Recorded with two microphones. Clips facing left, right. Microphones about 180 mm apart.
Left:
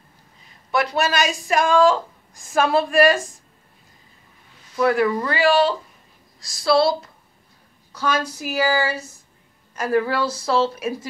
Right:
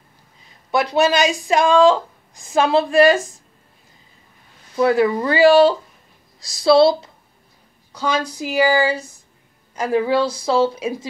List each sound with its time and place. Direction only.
0.7 s speech: 20° right (ahead or behind)
4.7 s a woman's voice: 25° right (ahead or behind)